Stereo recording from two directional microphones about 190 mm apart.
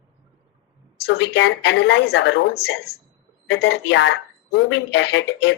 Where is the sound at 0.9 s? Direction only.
65° left (ahead or behind).